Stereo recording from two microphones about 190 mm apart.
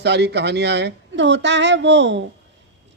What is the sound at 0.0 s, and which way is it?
A woman's voice, 60° right (ahead or behind).